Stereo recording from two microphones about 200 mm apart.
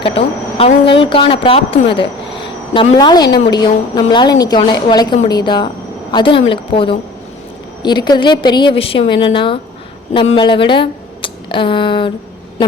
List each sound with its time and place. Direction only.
0.0 s a woman's voice: 25° left (ahead or behind)